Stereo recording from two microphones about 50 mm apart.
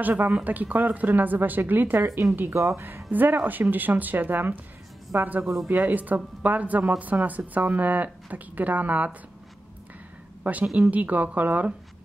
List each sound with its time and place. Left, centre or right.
0.0 s a woman's voice: right
2.5 s speech: right
3.1 s a woman's voice: right
10.4 s a woman's voice: right